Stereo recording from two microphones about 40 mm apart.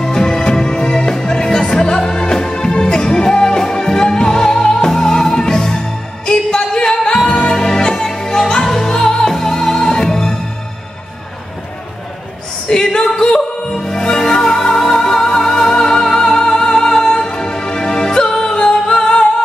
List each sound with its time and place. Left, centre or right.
0.0 s music: centre
12.8 s a sound: centre
13.1 s music: left